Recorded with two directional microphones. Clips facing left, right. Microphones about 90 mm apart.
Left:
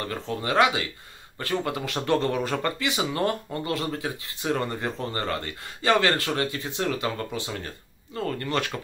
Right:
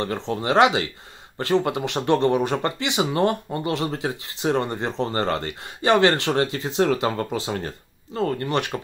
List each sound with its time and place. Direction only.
0.0 s speech: 30° right (ahead or behind)
8.7 s speech: 20° right (ahead or behind)